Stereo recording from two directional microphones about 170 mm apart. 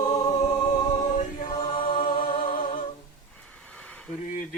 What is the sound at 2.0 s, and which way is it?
Music, 55° left (ahead or behind).